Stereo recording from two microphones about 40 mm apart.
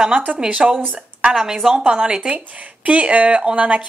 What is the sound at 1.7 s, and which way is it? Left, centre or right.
Speech, right.